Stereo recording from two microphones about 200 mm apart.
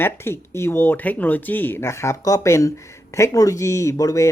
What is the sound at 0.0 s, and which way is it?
Speech, 10° left (ahead or behind).